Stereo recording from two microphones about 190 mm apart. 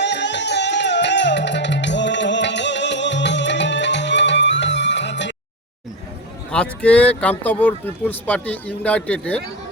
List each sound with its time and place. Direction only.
0.0 s music: 65° left (ahead or behind)
6.5 s speech: 5° left (ahead or behind)